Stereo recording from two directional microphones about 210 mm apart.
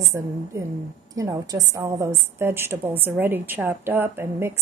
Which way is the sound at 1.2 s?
15° right (ahead or behind).